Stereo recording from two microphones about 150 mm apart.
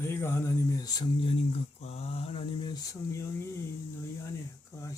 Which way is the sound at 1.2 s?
45° left (ahead or behind).